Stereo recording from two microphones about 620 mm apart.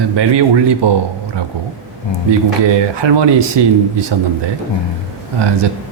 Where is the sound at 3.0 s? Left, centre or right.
Right.